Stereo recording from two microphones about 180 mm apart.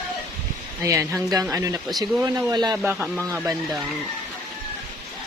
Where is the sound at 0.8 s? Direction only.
15° right (ahead or behind).